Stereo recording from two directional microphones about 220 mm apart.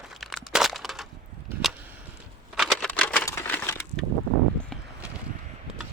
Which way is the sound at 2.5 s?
Centre (ahead or behind).